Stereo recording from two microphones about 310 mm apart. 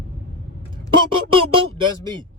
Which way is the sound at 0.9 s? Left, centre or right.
Centre.